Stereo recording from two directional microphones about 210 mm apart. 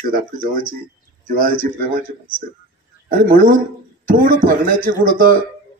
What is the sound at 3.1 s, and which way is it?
A man's voice, 45° right (ahead or behind).